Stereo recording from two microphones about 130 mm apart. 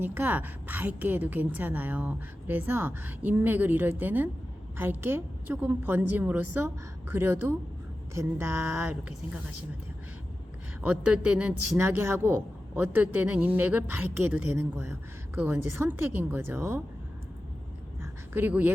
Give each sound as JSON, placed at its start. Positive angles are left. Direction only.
{"t": 0.0, "sound": "a woman's voice", "side_deg": -15}
{"t": 10.8, "sound": "a woman's voice", "side_deg": -10}
{"t": 18.0, "sound": "a sound", "side_deg": -15}